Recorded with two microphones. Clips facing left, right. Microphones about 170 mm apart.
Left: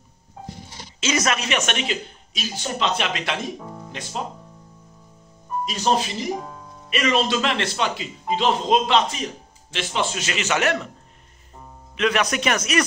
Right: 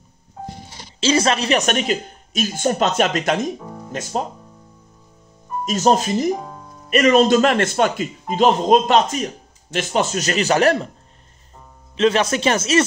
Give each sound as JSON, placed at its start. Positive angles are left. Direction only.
{"t": 1.0, "sound": "speech", "side_deg": -30}
{"t": 5.7, "sound": "speech", "side_deg": -45}
{"t": 12.0, "sound": "speech", "side_deg": -30}